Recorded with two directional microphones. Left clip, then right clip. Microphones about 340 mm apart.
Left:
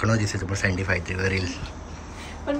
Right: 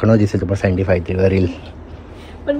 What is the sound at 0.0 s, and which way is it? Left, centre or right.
Speech, centre.